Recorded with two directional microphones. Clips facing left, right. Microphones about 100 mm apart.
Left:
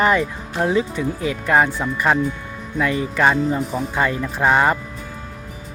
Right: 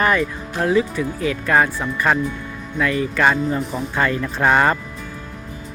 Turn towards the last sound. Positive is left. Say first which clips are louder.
# even
turn(degrees=15)  # may be behind; listen again after turning